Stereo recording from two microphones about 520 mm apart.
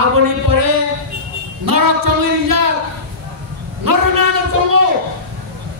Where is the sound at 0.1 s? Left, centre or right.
Right.